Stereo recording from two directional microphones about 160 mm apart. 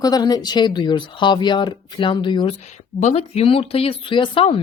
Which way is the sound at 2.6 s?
45° left (ahead or behind).